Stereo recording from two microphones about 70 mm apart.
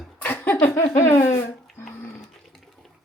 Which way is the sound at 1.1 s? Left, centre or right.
Left.